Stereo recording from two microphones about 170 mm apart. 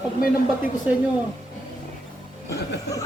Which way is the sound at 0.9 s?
10° right (ahead or behind).